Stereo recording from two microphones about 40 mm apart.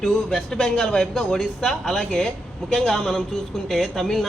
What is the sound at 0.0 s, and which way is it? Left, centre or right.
A man's voice, centre.